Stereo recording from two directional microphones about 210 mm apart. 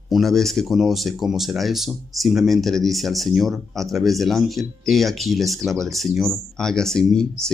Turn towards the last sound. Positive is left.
turn(degrees=0)  # may be behind; listen again after turning